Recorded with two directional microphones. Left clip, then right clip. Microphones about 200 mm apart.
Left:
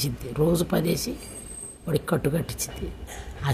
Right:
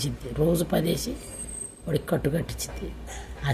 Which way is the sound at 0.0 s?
15° left (ahead or behind).